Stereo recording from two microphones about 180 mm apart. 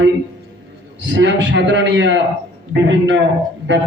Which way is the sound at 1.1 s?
80° right.